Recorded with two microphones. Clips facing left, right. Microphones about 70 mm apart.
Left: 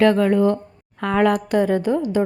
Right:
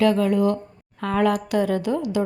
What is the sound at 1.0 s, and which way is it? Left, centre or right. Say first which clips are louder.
A woman's voice: left 3 dB; left.